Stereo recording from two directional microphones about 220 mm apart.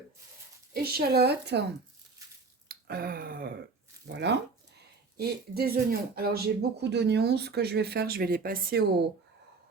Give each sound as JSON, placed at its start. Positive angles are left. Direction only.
{"t": 0.7, "sound": "speech", "side_deg": -45}
{"t": 2.6, "sound": "finger snapping", "side_deg": -45}
{"t": 4.0, "sound": "speech", "side_deg": -50}